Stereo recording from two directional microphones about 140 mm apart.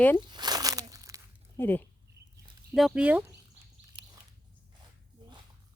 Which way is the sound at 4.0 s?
50° right (ahead or behind).